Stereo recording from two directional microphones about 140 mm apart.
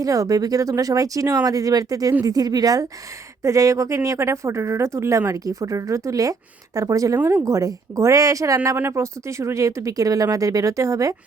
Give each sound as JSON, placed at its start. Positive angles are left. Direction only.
{"t": 0.0, "sound": "speech", "side_deg": -25}